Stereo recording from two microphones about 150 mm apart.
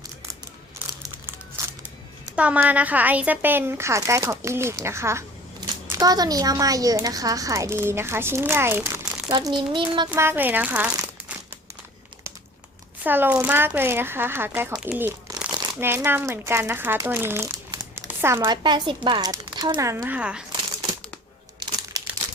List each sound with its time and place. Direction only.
2.3 s a woman's voice: 10° right (ahead or behind)
9.3 s a child's voice: 30° right (ahead or behind)
10.1 s speech: 15° right (ahead or behind)
13.0 s speech: 15° right (ahead or behind)
14.8 s crumpling: 10° right (ahead or behind)
15.8 s speech: 15° right (ahead or behind)
17.9 s crumpling: 15° right (ahead or behind)
18.4 s a woman's voice: 30° right (ahead or behind)
20.1 s speech: 5° right (ahead or behind)